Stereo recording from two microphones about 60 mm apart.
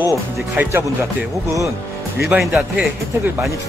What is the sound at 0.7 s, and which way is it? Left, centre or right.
Speech, right.